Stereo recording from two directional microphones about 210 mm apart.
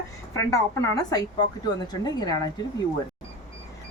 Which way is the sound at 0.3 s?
15° left (ahead or behind).